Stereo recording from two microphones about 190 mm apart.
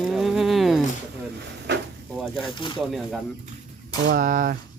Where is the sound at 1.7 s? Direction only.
60° right (ahead or behind).